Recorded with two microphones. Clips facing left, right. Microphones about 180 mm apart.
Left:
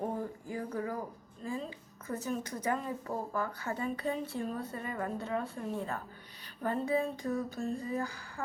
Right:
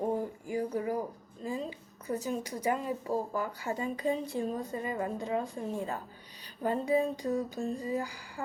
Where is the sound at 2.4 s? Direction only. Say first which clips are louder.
Right 3 dB; 10° right (ahead or behind).